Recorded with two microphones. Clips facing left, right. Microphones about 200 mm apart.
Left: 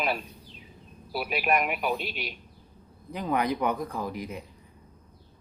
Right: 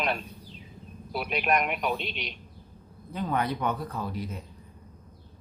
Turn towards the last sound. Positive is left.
turn(degrees=15)  # may be behind; listen again after turning